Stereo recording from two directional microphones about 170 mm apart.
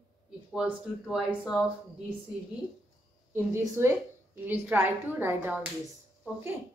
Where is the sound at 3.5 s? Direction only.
15° right (ahead or behind).